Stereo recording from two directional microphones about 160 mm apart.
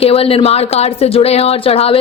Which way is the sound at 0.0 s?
35° left (ahead or behind).